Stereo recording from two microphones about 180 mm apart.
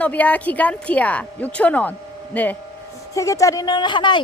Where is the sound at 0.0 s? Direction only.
10° left (ahead or behind).